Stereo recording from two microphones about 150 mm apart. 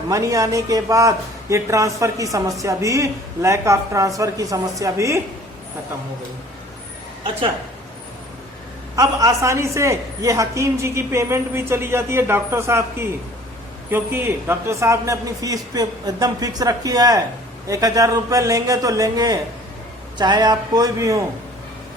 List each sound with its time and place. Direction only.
0.1 s a man's voice: 20° right (ahead or behind)
9.0 s a man's voice: 20° right (ahead or behind)